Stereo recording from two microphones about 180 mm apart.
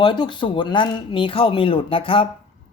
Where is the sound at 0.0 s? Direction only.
25° left (ahead or behind).